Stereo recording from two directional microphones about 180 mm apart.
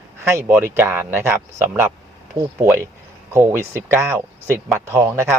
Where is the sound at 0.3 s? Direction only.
15° right (ahead or behind).